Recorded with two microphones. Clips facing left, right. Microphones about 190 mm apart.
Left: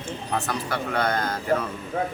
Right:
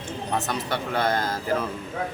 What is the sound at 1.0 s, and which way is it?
Speech, 25° right (ahead or behind).